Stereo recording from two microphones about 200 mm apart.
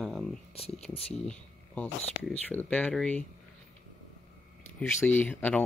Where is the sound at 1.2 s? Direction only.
5° left (ahead or behind).